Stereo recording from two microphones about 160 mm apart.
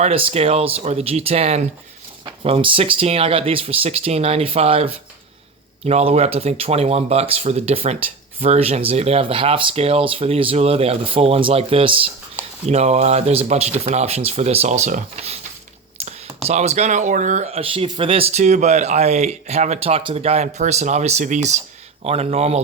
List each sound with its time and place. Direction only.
0.0 s speech: 35° right (ahead or behind)